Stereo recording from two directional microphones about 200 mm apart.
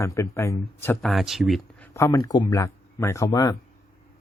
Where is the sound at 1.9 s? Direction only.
15° left (ahead or behind).